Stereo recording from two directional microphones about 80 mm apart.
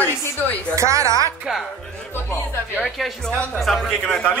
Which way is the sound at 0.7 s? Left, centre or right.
Right.